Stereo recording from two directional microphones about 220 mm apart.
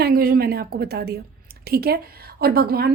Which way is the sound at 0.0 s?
40° right (ahead or behind).